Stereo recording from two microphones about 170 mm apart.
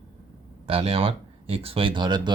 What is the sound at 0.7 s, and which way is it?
Speech, 35° right (ahead or behind).